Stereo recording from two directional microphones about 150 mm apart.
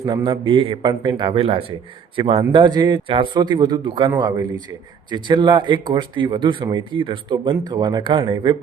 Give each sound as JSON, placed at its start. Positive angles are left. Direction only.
{"t": 0.0, "sound": "speech", "side_deg": -30}